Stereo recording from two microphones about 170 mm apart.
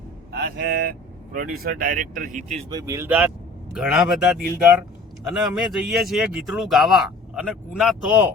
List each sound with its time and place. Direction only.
0.3 s speech: 70° right (ahead or behind); by 2.6 s 45° right (ahead or behind)
2.6 s speech: 20° right (ahead or behind); by 8.3 s 5° right (ahead or behind)